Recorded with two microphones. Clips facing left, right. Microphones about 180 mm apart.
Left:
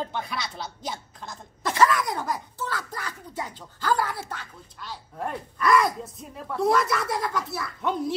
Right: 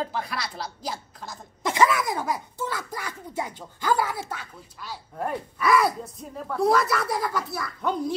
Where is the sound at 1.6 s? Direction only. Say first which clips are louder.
Even; 10° right (ahead or behind).